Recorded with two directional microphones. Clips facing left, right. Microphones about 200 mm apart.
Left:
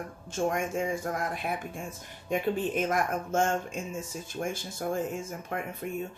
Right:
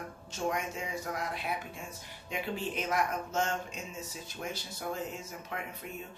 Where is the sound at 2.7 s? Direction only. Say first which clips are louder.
Left 4 dB; 50° left (ahead or behind).